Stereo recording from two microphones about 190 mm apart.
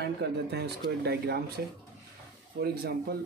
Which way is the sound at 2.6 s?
55° right (ahead or behind).